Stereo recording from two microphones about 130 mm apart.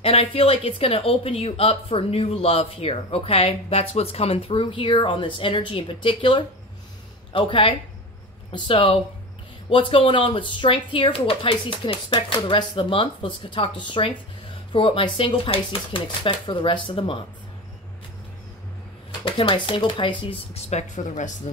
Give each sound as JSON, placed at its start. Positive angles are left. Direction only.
{"t": 0.0, "sound": "speech", "side_deg": 45}
{"t": 19.2, "sound": "speech", "side_deg": 40}